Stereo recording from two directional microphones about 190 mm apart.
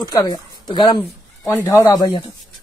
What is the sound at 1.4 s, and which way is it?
Speech, 15° left (ahead or behind).